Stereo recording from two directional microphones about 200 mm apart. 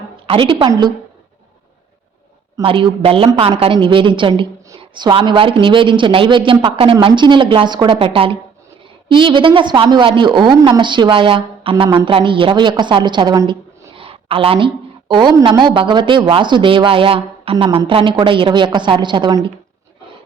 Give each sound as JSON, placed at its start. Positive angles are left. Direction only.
{"t": 0.3, "sound": "a woman's voice", "side_deg": -25}
{"t": 2.6, "sound": "a woman's voice", "side_deg": -25}